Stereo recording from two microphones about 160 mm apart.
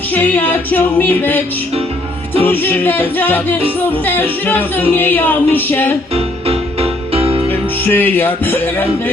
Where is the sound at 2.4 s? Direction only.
10° left (ahead or behind).